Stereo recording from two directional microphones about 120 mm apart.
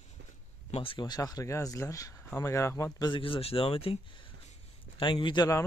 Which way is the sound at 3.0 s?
45° left (ahead or behind).